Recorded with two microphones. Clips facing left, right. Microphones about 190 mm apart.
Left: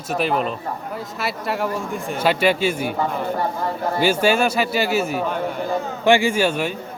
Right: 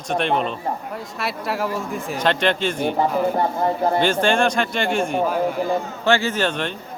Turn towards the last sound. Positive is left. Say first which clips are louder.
# left 3 dB
turn(degrees=10)  # may be behind; listen again after turning